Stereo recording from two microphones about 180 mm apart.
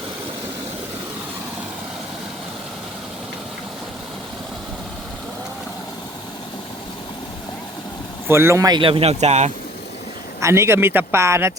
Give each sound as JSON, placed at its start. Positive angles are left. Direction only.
{"t": 8.3, "sound": "speech", "side_deg": -15}
{"t": 10.4, "sound": "speech", "side_deg": -15}